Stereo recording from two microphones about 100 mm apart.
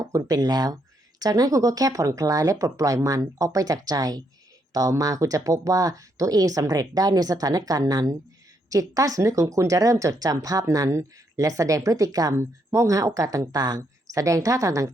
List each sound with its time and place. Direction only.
0.1 s speech: 40° right (ahead or behind)